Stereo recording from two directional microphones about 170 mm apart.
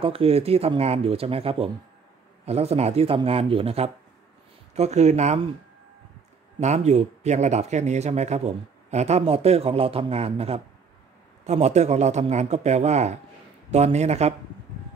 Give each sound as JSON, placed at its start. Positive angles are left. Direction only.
{"t": 0.0, "sound": "speech", "side_deg": -35}
{"t": 6.6, "sound": "speech", "side_deg": -40}